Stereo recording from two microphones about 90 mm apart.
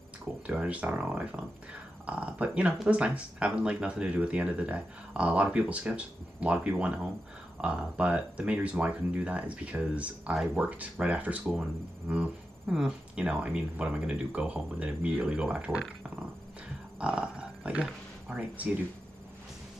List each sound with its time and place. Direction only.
0.5 s speech: 15° right (ahead or behind)
17.0 s dog: 10° right (ahead or behind)
18.3 s speech: 15° right (ahead or behind)